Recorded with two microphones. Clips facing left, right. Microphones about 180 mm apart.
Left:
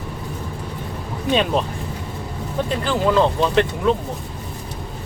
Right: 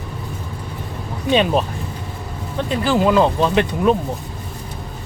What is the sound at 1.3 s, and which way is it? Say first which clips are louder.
Speech: right 3 dB; centre (ahead or behind).